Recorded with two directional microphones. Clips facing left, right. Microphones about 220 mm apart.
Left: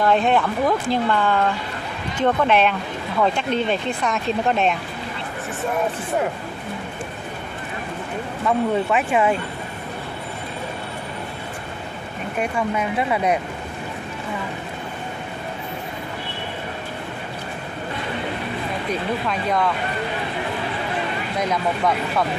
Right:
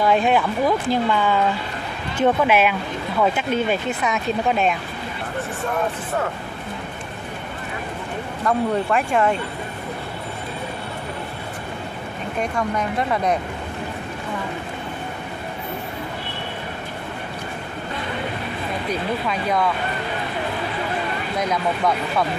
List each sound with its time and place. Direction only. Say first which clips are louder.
0.0 s speech: even; 5° right (ahead or behind)
8.5 s speech: even; 5° left (ahead or behind)
12.4 s speech: left 1 dB; 10° left (ahead or behind)
19.2 s speech: right 1 dB; centre (ahead or behind)
21.4 s speech: even; 5° left (ahead or behind)